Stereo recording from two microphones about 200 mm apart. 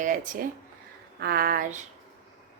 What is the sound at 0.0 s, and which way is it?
Speech, 40° right (ahead or behind).